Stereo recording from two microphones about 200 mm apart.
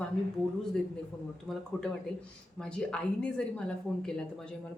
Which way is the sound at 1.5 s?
5° left (ahead or behind).